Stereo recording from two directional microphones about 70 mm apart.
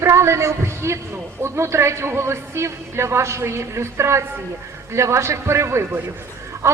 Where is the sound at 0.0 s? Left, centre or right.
Right.